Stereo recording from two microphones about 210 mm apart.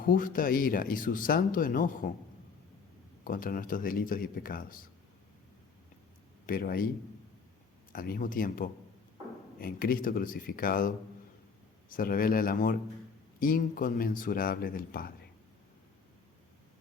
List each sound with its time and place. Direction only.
0.0 s speech: 40° left (ahead or behind)
3.2 s speech: 40° left (ahead or behind)
6.4 s a man's voice: 45° left (ahead or behind)
7.9 s speech: 45° left (ahead or behind)